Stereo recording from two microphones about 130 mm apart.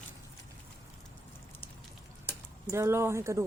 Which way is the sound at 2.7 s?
20° right (ahead or behind).